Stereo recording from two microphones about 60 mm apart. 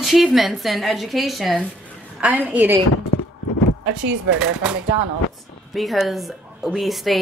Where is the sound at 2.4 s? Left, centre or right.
Right.